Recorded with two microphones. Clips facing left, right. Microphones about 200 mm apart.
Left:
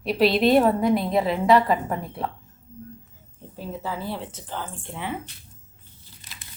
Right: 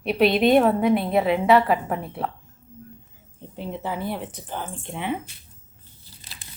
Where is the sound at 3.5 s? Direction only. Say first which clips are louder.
Right 2 dB; 25° right (ahead or behind).